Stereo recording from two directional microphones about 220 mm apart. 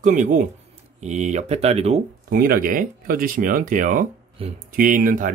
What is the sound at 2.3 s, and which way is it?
Speech, 40° right (ahead or behind).